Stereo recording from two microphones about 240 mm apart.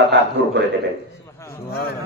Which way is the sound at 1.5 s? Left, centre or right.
Left.